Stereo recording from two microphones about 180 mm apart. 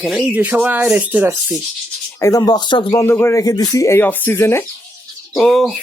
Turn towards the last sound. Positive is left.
turn(degrees=0)  # may be behind; listen again after turning